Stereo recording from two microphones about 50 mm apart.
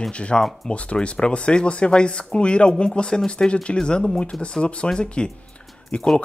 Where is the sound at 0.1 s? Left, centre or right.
Left.